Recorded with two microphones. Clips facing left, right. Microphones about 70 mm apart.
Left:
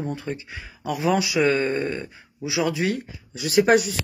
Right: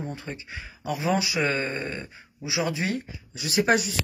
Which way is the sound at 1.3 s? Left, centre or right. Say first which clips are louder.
Left 6 dB; right.